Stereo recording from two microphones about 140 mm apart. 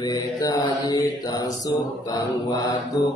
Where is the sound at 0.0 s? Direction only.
30° left (ahead or behind).